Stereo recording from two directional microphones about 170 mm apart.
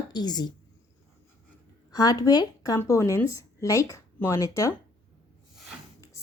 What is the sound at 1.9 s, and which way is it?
Speech, 20° left (ahead or behind).